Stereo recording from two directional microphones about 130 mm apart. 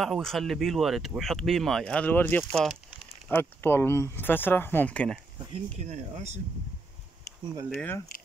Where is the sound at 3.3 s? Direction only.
15° left (ahead or behind).